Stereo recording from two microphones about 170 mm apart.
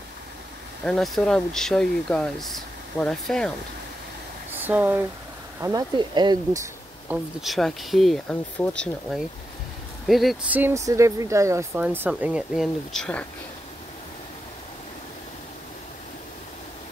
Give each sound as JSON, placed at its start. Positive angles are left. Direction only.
{"t": 0.8, "sound": "speech", "side_deg": 0}
{"t": 4.5, "sound": "speech", "side_deg": -10}
{"t": 5.6, "sound": "speech", "side_deg": -20}
{"t": 7.1, "sound": "speech", "side_deg": 0}
{"t": 10.6, "sound": "speech", "side_deg": -15}